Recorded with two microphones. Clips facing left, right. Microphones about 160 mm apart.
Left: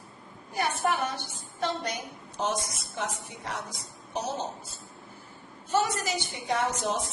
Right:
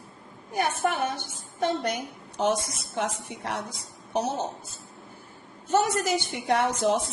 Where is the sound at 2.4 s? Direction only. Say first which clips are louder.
Right 5 dB; 75° right (ahead or behind).